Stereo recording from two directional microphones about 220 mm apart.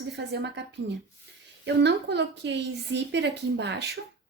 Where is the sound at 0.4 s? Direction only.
50° right (ahead or behind).